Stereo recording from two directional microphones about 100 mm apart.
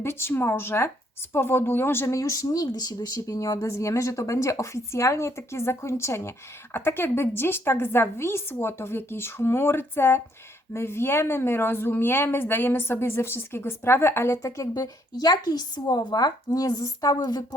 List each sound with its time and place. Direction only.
0.0 s a woman's voice: 25° left (ahead or behind); by 17.4 s 45° left (ahead or behind)